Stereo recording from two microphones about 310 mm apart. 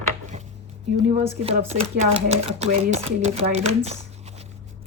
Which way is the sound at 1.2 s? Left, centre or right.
Centre.